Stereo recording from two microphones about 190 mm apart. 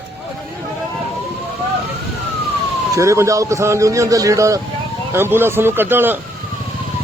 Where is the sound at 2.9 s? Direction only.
15° right (ahead or behind).